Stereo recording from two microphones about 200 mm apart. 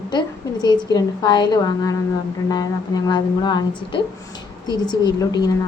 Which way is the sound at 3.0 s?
20° left (ahead or behind).